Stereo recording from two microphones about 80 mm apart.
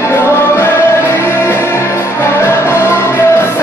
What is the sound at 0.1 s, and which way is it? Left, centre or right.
Music, left.